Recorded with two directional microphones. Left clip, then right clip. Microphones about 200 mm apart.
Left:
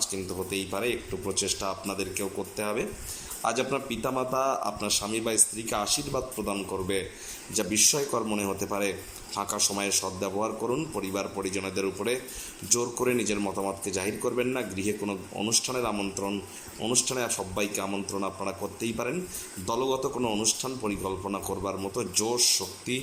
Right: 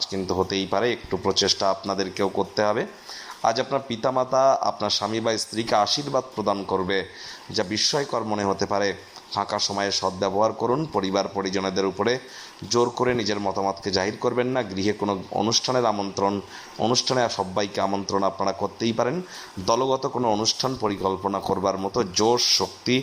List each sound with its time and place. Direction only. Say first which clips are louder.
0.1 s a man's voice: right 8 dB; centre (ahead or behind)